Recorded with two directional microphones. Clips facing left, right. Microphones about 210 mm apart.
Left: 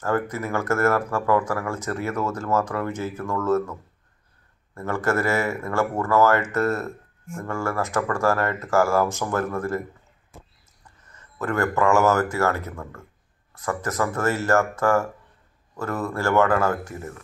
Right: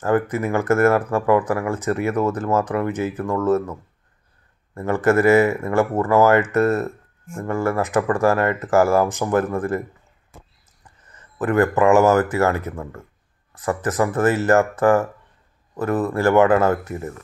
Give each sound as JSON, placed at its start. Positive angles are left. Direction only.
{"t": 0.0, "sound": "speech", "side_deg": -15}
{"t": 4.7, "sound": "speech", "side_deg": -15}
{"t": 11.1, "sound": "speech", "side_deg": -15}